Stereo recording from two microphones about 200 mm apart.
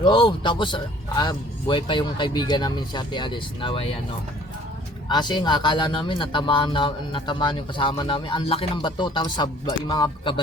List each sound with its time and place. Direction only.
0.0 s speech: 20° left (ahead or behind)
5.0 s speech: 20° left (ahead or behind)